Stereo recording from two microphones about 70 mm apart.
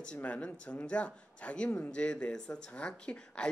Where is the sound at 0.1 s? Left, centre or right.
Centre.